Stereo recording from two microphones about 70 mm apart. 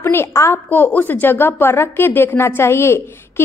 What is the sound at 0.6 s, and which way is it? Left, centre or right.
A woman's voice, left.